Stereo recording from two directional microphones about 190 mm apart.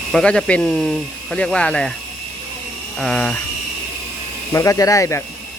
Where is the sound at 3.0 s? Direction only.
5° left (ahead or behind).